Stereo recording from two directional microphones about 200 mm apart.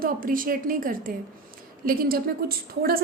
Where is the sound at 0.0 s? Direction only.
45° right (ahead or behind).